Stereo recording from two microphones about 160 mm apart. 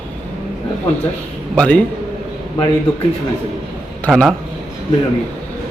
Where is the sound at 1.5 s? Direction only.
10° left (ahead or behind).